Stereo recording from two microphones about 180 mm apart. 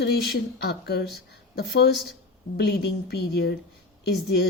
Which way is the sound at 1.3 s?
65° left (ahead or behind).